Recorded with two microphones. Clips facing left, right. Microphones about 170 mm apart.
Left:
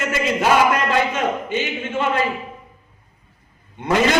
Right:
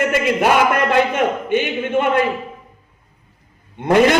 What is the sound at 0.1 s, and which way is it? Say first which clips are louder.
A man's voice: right 2 dB; 55° right (ahead or behind).